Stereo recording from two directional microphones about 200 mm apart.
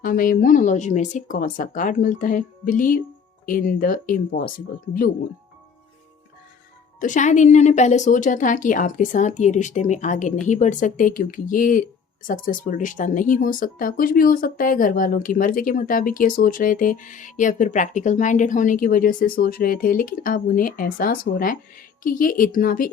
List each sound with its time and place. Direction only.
0.0 s a woman's voice: 45° left (ahead or behind)
7.0 s a woman's voice: 40° left (ahead or behind)